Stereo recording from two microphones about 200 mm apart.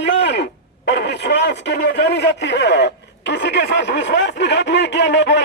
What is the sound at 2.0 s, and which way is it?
Speech, 55° left (ahead or behind).